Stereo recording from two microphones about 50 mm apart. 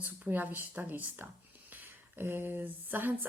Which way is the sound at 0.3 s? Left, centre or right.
Right.